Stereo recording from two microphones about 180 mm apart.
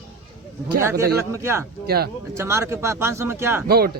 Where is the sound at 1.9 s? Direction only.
60° right (ahead or behind).